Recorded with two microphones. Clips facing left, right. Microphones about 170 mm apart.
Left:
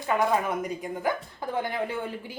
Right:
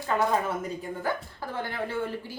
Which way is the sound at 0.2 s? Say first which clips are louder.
Even; 15° left (ahead or behind).